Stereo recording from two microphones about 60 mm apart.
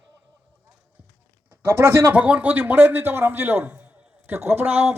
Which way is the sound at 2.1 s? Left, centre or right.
Right.